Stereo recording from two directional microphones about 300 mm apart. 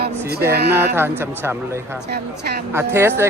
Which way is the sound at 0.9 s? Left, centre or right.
Centre.